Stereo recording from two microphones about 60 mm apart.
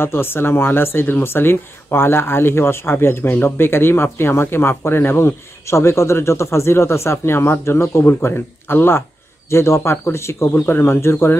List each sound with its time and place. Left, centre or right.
0.0 s speech: left
10.5 s speech: left